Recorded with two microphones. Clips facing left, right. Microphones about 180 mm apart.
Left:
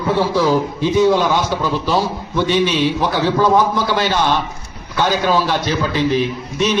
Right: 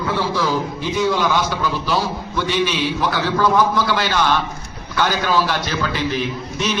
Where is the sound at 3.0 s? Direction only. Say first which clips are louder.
Even; 20° left (ahead or behind).